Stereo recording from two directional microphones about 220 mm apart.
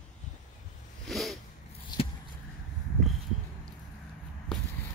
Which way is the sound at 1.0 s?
Centre (ahead or behind).